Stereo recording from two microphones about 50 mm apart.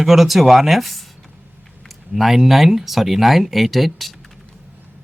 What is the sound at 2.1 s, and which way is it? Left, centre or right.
Speech, centre.